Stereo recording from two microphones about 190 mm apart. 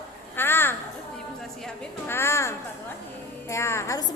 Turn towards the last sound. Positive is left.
turn(degrees=15)  # may be behind; listen again after turning